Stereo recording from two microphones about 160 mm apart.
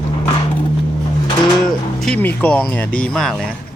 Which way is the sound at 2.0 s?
5° left (ahead or behind).